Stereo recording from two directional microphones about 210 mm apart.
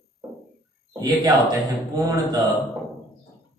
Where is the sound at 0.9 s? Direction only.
15° right (ahead or behind).